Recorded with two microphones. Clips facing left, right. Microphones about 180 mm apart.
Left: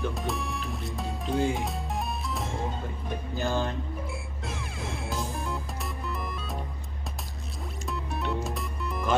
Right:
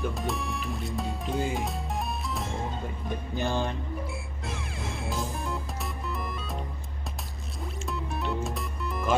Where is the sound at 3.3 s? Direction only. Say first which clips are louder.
Even; 15° right (ahead or behind).